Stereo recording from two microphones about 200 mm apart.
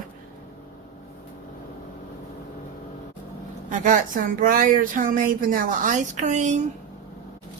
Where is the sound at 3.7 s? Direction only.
40° right (ahead or behind).